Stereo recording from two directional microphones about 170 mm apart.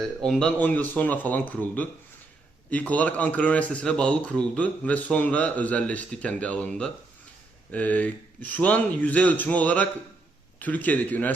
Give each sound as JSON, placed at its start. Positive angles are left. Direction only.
{"t": 0.2, "sound": "speech", "side_deg": 5}